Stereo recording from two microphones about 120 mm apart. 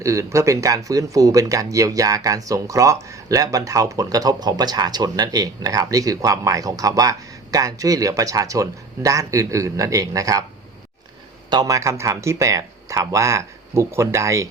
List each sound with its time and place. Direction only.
0.0 s speech: 25° right (ahead or behind)
11.4 s speech: 30° right (ahead or behind)